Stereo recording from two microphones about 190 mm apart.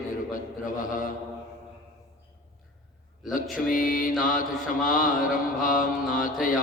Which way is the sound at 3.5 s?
45° left (ahead or behind).